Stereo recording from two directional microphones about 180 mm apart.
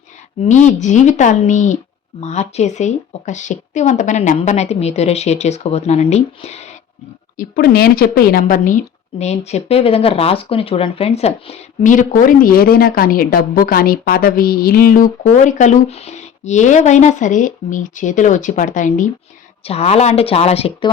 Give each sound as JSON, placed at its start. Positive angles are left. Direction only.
{"t": 0.4, "sound": "a woman's voice", "side_deg": 40}
{"t": 7.3, "sound": "a woman's voice", "side_deg": 55}
{"t": 19.6, "sound": "speech", "side_deg": 35}